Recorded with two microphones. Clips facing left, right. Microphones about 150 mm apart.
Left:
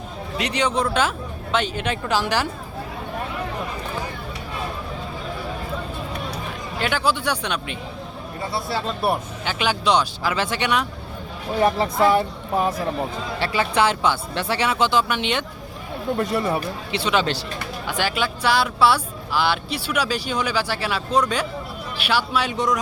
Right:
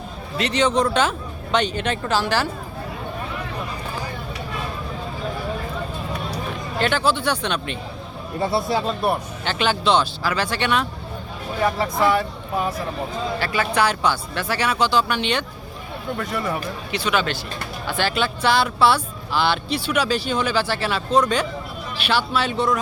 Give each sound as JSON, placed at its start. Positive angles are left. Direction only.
{"t": 0.3, "sound": "speech", "side_deg": 10}
{"t": 6.7, "sound": "speech", "side_deg": 10}
{"t": 8.4, "sound": "speech", "side_deg": -25}
{"t": 8.9, "sound": "speech", "side_deg": 10}
{"t": 17.8, "sound": "speech", "side_deg": 15}